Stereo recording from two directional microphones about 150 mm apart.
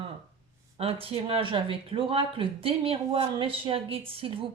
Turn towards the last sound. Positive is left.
turn(degrees=-40)  # may be behind; listen again after turning